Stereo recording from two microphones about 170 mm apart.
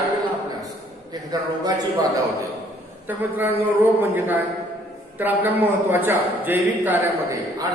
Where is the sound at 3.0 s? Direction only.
10° right (ahead or behind).